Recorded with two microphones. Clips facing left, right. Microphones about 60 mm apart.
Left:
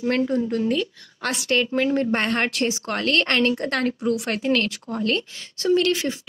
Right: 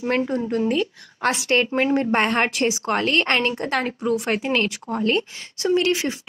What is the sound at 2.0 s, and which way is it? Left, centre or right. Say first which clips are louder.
A woman's voice: right 2 dB; centre.